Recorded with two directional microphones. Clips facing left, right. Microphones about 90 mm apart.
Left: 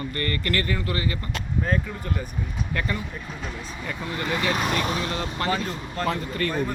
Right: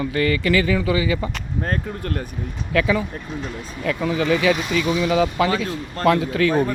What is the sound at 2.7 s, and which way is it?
Speech, 90° right.